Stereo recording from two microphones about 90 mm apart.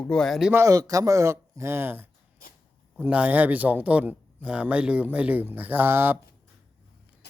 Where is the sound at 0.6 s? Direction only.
40° right (ahead or behind); by 2.1 s 25° right (ahead or behind).